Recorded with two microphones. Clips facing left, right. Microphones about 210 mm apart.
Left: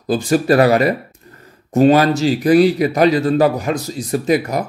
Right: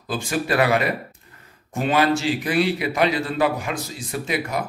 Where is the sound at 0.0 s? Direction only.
40° left (ahead or behind).